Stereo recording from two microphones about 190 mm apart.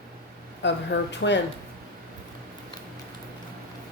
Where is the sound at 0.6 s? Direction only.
70° left (ahead or behind).